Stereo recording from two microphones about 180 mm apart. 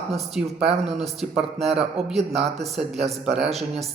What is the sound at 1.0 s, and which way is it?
A man's voice, centre (ahead or behind).